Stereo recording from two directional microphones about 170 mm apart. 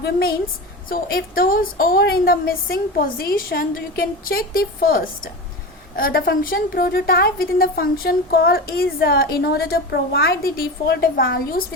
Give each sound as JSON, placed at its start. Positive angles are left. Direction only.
{"t": 0.9, "sound": "a woman's voice", "side_deg": 55}